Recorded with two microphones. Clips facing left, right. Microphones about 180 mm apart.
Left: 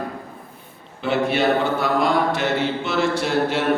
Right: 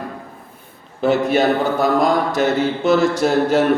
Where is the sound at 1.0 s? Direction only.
40° right (ahead or behind).